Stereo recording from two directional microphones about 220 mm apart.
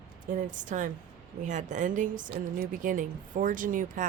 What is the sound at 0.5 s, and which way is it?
A woman's voice, 35° right (ahead or behind).